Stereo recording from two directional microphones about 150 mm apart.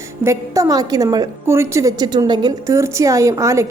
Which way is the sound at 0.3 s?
20° right (ahead or behind).